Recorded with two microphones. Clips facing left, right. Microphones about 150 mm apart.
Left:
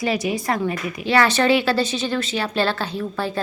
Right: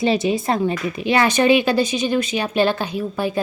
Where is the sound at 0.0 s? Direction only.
25° right (ahead or behind).